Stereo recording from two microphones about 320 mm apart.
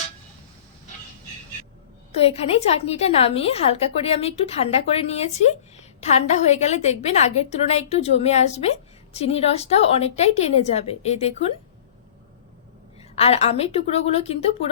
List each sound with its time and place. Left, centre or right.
2.1 s a woman's voice: centre
13.0 s a woman's voice: centre